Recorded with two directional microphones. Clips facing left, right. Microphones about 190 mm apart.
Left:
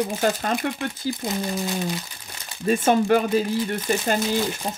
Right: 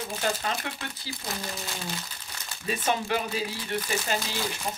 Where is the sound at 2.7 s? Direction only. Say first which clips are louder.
Left 10 dB; 50° left (ahead or behind).